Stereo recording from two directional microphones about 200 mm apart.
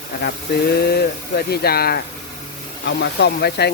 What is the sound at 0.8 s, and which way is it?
Speech, 50° left (ahead or behind).